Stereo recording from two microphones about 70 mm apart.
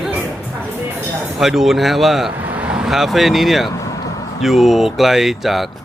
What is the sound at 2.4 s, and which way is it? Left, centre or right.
Vehicle, right.